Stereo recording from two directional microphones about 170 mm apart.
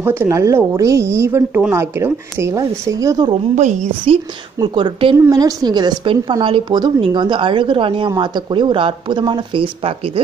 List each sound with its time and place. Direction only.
0.0 s speech: 15° right (ahead or behind)
3.5 s a woman's voice: 45° right (ahead or behind)
4.6 s a woman's voice: 30° right (ahead or behind)
5.1 s a woman's voice: 20° right (ahead or behind); by 10.2 s 35° right (ahead or behind)